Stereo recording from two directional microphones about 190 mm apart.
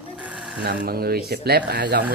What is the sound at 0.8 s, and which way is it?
Speech, 50° right (ahead or behind).